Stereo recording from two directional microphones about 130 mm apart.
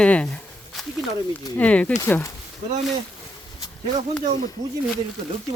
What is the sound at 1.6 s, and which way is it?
Speech, 10° left (ahead or behind).